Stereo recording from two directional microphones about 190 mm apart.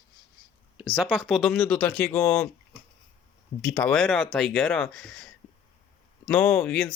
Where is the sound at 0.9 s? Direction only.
Centre (ahead or behind); by 2.5 s 15° left (ahead or behind).